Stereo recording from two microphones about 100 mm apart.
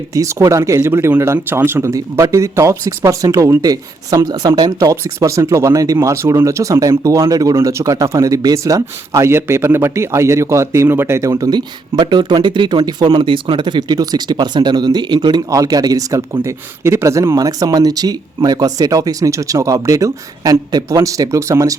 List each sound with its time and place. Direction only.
0.1 s speech: 30° right (ahead or behind)